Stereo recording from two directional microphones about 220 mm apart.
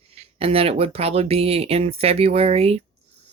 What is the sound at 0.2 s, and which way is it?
Speech, 25° right (ahead or behind).